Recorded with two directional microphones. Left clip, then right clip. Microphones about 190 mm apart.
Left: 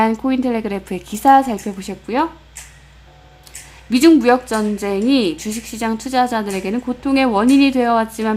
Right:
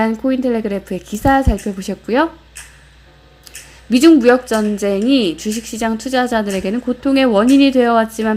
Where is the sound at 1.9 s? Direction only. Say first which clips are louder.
Right 4 dB; 15° right (ahead or behind).